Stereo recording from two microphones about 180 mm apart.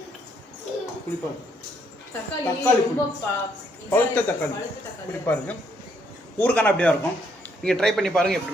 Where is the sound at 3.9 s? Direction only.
10° left (ahead or behind).